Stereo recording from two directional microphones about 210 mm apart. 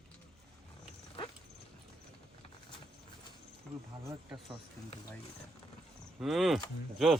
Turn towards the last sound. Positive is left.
turn(degrees=0)  # may be behind; listen again after turning